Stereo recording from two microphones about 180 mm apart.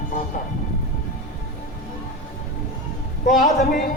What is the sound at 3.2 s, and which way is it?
Speech, 45° left (ahead or behind).